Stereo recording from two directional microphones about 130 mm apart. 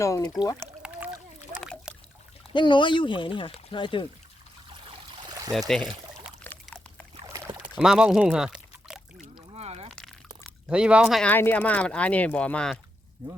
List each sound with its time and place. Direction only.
0.0 s speech: 25° left (ahead or behind)
0.5 s pour: 10° right (ahead or behind)
2.5 s speech: 40° left (ahead or behind)
5.5 s speech: centre (ahead or behind)
6.4 s dog: 15° left (ahead or behind)
7.3 s rowboat: 30° right (ahead or behind)
7.8 s speech: 5° right (ahead or behind)
9.2 s a sound: 55° right (ahead or behind)
10.7 s speech: 10° right (ahead or behind)
11.2 s speech: 15° left (ahead or behind)